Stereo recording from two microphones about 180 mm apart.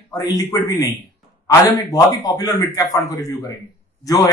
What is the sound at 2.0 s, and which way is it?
Speech, 20° left (ahead or behind).